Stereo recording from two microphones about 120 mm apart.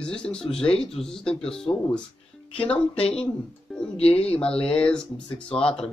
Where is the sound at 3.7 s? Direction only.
Centre (ahead or behind).